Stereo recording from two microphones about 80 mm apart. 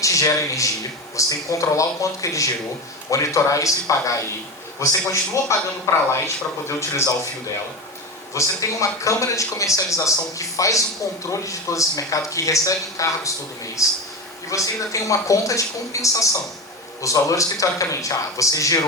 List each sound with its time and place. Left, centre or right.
0.0 s speech: left
8.3 s speech: left